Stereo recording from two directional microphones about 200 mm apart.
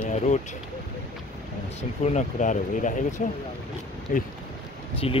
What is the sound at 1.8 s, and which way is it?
Speech, 35° left (ahead or behind).